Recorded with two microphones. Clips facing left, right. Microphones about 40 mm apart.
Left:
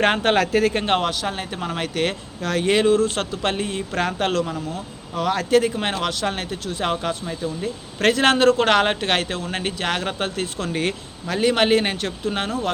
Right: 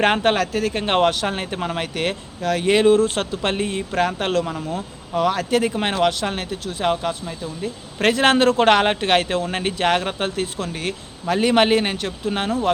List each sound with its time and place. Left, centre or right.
0.0 s speech: centre
1.3 s speech: right
4.4 s speech: right
6.2 s speech: centre
7.9 s speech: centre
9.7 s speech: right
10.7 s speech: centre
11.3 s speech: centre
11.8 s speech: centre